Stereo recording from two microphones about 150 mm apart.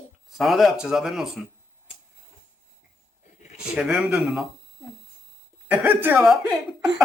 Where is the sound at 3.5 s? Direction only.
5° right (ahead or behind).